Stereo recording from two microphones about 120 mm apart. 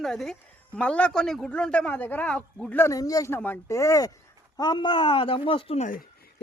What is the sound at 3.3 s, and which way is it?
A woman's voice, 15° left (ahead or behind).